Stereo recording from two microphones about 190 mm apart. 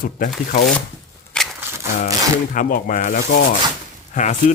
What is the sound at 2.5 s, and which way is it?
Speech, 45° left (ahead or behind).